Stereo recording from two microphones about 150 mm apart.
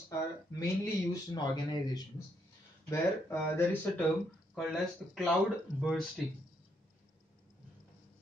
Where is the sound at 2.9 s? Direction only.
15° left (ahead or behind).